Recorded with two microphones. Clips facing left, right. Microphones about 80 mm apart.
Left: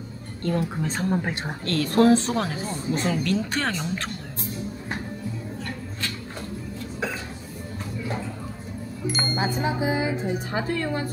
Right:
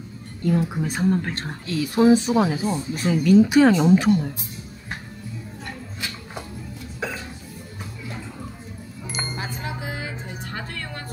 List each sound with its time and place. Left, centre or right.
0.4 s speech: centre
1.1 s speech: centre
1.7 s speech: centre
9.0 s music: centre
9.4 s music: left